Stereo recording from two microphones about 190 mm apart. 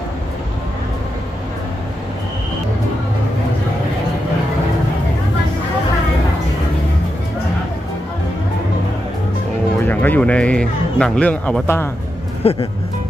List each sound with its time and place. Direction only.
9.8 s music: 10° left (ahead or behind)
12.4 s speech: 30° left (ahead or behind)